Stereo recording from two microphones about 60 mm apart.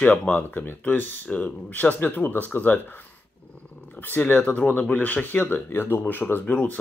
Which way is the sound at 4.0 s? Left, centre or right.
Left.